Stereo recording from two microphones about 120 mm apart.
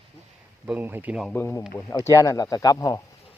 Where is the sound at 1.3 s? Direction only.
20° left (ahead or behind).